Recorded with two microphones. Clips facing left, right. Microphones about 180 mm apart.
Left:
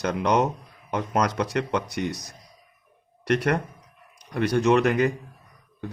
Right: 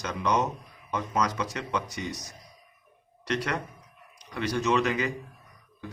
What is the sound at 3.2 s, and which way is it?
Speech, 55° left (ahead or behind).